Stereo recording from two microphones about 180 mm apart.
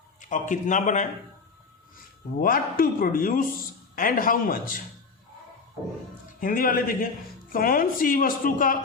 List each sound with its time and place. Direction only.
0.3 s a woman's voice: 45° left (ahead or behind)
2.4 s a woman's voice: 55° left (ahead or behind)
6.4 s a woman's voice: 50° left (ahead or behind)